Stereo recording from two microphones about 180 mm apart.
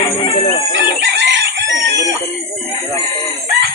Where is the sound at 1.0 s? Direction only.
80° right.